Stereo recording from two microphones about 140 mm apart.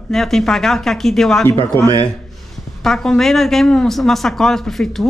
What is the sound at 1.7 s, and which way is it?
Speech, 25° right (ahead or behind).